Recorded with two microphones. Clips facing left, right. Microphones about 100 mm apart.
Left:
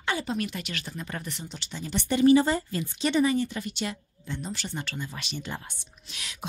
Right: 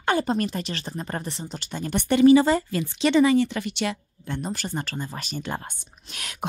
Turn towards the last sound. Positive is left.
turn(degrees=-50)  # may be behind; listen again after turning